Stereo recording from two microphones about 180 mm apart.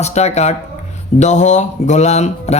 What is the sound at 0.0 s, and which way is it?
Speech, 40° left (ahead or behind).